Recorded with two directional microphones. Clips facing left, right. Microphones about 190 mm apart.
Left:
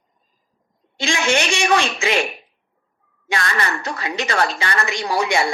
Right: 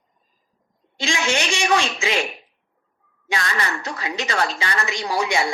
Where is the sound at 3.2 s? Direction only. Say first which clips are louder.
Left 2 dB; 55° left (ahead or behind).